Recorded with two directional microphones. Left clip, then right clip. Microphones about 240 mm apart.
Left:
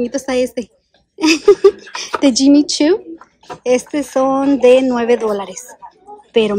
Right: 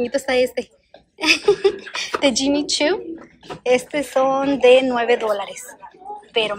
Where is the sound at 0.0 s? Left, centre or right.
Left.